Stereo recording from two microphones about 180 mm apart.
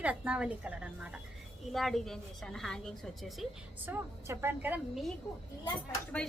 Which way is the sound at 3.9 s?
10° right (ahead or behind).